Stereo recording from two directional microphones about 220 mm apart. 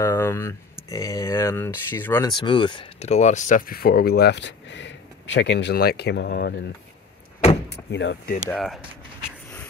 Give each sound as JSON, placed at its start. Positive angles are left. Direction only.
{"t": 0.0, "sound": "speech", "side_deg": 15}
{"t": 2.3, "sound": "speech", "side_deg": 20}
{"t": 7.7, "sound": "speech", "side_deg": 55}
{"t": 8.5, "sound": "speech", "side_deg": 0}